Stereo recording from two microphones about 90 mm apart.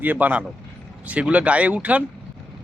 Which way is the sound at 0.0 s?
20° right (ahead or behind).